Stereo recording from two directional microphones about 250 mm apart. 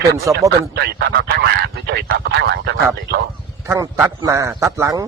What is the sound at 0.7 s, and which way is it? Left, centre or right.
Speech, right.